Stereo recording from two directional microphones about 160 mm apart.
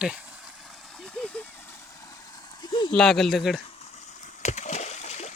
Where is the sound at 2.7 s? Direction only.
30° left (ahead or behind).